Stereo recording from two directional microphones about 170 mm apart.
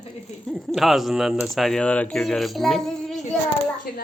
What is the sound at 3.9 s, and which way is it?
Speech, 65° left (ahead or behind).